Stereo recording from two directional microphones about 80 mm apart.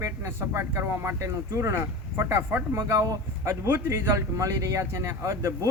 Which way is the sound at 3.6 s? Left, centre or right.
Right.